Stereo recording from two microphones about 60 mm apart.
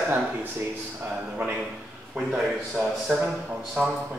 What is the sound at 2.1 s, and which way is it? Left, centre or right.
A man's voice, centre.